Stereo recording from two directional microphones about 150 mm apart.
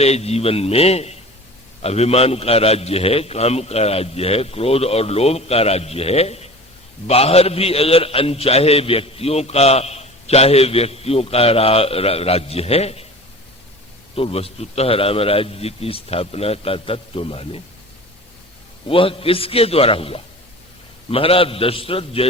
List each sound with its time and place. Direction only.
0.0 s a man's voice: 45° left (ahead or behind)
14.2 s a man's voice: 40° left (ahead or behind)
18.9 s a man's voice: 40° left (ahead or behind)